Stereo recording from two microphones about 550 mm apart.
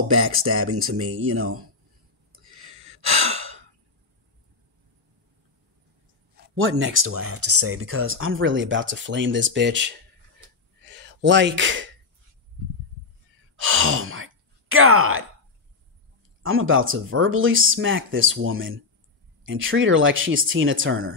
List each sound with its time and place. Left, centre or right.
0.1 s speech: right
3.2 s sigh: right
6.3 s speech: centre
13.6 s speech: right
16.4 s speech: right